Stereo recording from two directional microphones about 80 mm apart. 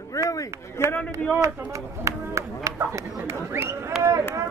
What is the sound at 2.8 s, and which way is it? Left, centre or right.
Speech, right.